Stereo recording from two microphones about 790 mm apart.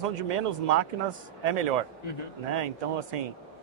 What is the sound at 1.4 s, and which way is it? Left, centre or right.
Speech, right.